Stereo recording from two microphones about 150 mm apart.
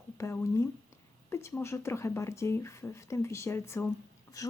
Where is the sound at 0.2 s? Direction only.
20° left (ahead or behind).